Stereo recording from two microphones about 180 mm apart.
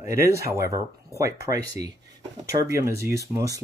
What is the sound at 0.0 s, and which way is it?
Speech, 15° right (ahead or behind).